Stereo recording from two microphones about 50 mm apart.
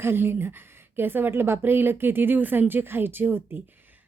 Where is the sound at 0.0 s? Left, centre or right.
Right.